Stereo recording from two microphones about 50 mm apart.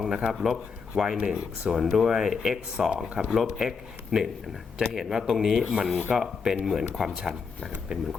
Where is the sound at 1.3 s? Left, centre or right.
Centre.